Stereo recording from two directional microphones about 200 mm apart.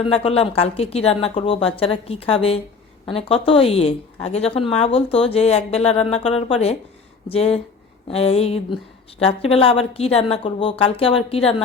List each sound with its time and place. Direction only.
0.0 s a woman's voice: 30° left (ahead or behind)